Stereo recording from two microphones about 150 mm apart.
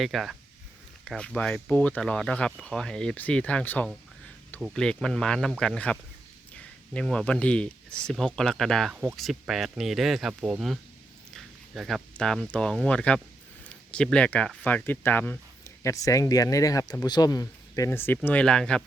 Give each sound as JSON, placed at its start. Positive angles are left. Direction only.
{"t": 0.0, "sound": "speech", "side_deg": 0}
{"t": 11.3, "sound": "a sound", "side_deg": 0}
{"t": 12.1, "sound": "speech", "side_deg": 5}